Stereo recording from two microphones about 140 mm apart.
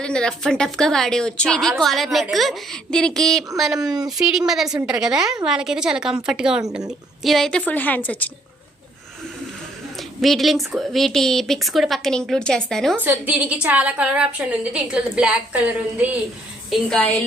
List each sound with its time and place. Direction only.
0.0 s a woman's voice: 5° left (ahead or behind)
10.0 s a woman's voice: centre (ahead or behind)
13.0 s a woman's voice: 15° right (ahead or behind)
16.6 s a woman's voice: centre (ahead or behind)